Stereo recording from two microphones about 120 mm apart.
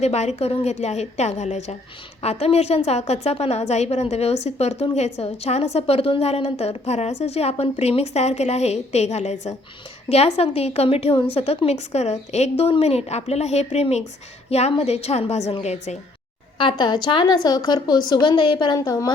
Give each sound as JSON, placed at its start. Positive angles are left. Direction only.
{"t": 0.0, "sound": "a woman's voice", "side_deg": 65}
{"t": 10.1, "sound": "a woman's voice", "side_deg": 60}
{"t": 16.6, "sound": "a woman's voice", "side_deg": 45}